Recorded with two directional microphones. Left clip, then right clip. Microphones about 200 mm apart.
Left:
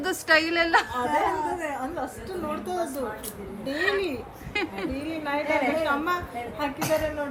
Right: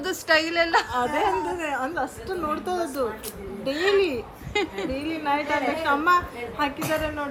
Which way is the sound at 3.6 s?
5° right (ahead or behind).